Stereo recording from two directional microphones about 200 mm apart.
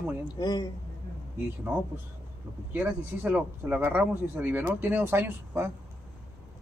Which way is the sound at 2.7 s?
10° right (ahead or behind).